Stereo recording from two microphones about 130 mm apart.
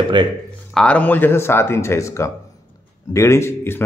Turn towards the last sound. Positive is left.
turn(degrees=20)  # may be behind; listen again after turning